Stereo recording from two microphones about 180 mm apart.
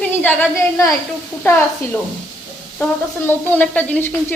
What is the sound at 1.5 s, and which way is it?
Speech, 10° left (ahead or behind).